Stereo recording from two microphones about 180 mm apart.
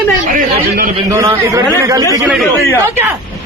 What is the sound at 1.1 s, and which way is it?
Speech, 15° right (ahead or behind).